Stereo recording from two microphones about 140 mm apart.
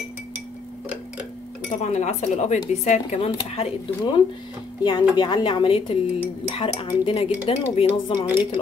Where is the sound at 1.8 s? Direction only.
55° left (ahead or behind).